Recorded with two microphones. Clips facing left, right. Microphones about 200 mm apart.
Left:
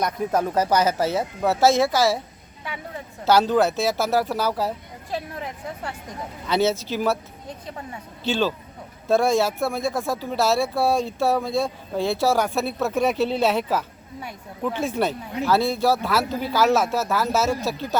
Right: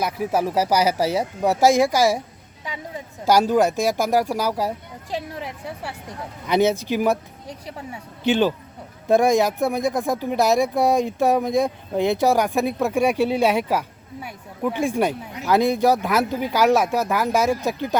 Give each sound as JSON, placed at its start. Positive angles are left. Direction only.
{"t": 0.0, "sound": "speech", "side_deg": -5}